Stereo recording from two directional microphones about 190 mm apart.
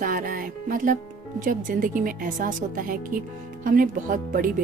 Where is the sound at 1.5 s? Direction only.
45° right (ahead or behind).